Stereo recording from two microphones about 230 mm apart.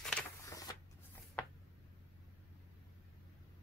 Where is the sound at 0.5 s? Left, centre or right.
Centre.